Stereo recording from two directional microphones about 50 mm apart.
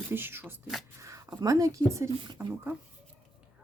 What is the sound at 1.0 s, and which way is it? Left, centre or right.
Speech, right.